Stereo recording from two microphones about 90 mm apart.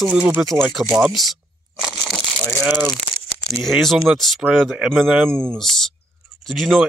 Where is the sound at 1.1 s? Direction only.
Centre (ahead or behind).